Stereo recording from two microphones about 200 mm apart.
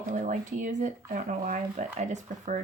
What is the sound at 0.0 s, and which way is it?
Speech, 40° right (ahead or behind).